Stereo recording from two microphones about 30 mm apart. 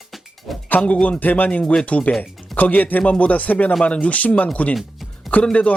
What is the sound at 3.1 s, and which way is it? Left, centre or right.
Speech, left.